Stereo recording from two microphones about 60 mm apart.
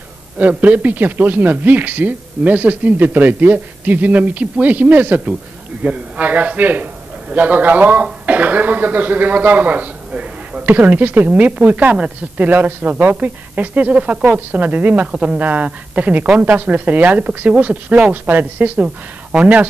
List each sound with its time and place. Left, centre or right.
0.4 s a man's voice: right
15.0 s speech: centre
15.3 s speech: right